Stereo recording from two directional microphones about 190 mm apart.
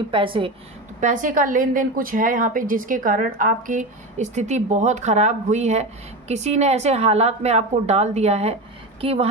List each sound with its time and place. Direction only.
0.1 s a woman's voice: 25° right (ahead or behind)
1.0 s a woman's voice: 45° right (ahead or behind)